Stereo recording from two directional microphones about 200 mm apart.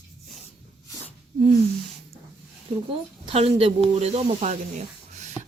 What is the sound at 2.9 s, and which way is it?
A woman's voice, 30° right (ahead or behind).